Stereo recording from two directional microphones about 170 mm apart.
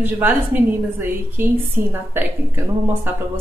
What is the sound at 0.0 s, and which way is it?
A woman's voice, 10° right (ahead or behind).